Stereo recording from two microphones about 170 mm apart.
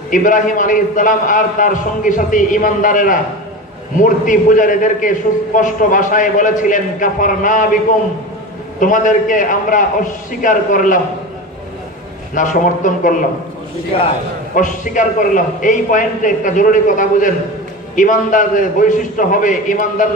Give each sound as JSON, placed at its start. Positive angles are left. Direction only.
{"t": 0.1, "sound": "a man's voice", "side_deg": 50}
{"t": 8.7, "sound": "a man's voice", "side_deg": 50}
{"t": 12.4, "sound": "a man's voice", "side_deg": 50}
{"t": 14.5, "sound": "a man's voice", "side_deg": 50}